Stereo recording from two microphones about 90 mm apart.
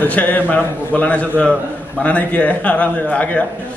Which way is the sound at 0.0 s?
20° left (ahead or behind).